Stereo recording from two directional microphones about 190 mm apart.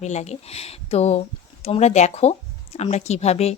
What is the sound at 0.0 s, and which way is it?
A woman's voice, 35° left (ahead or behind).